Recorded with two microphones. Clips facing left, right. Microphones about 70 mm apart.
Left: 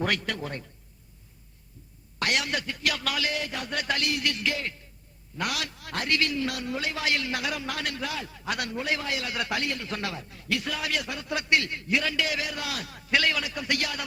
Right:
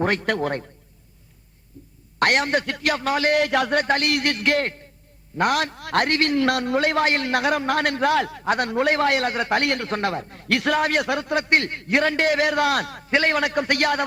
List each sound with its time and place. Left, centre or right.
0.0 s a man's voice: right
0.3 s a man's voice: right
2.1 s a man's voice: right
3.2 s a man's voice: right
3.8 s a man's voice: right
5.4 s a man's voice: right
6.3 s a man's voice: right
8.4 s a man's voice: right
8.7 s a man's voice: right
9.3 s a man's voice: right
9.6 s a man's voice: right
9.9 s a man's voice: right
13.1 s a man's voice: right
13.3 s a man's voice: right